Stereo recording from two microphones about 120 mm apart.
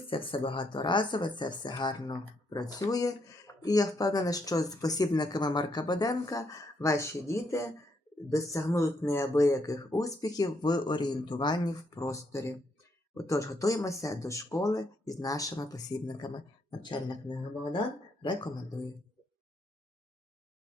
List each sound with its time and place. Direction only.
0.1 s speech: 45° left (ahead or behind)